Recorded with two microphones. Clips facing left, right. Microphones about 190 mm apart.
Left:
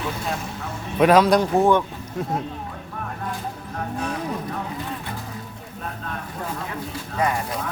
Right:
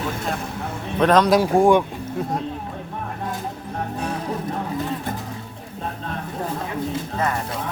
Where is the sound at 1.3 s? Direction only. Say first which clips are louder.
Right 2 dB; 10° right (ahead or behind).